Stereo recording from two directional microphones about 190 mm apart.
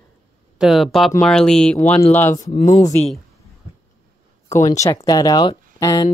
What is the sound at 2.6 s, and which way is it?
Speech, 40° left (ahead or behind).